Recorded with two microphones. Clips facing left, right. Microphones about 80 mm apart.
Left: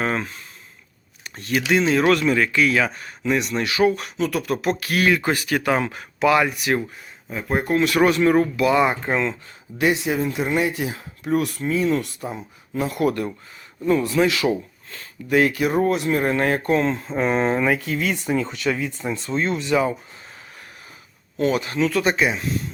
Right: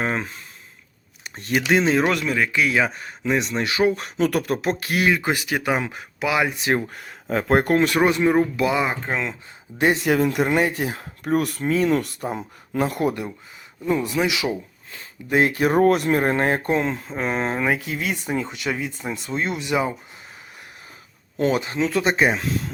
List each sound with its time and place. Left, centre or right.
0.0 s speech: centre
1.2 s speech: right
2.0 s speech: centre; by 4.1 s right
4.2 s speech: right; by 6.5 s centre
6.6 s speech: right
6.9 s speech: right
7.8 s speech: right
8.7 s speech: centre
9.7 s speech: right
10.0 s speech: right
13.8 s speech: centre
14.9 s speech: right
16.8 s speech: centre
21.3 s speech: right